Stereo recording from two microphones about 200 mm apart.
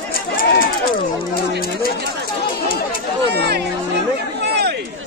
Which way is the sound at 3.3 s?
55° right (ahead or behind).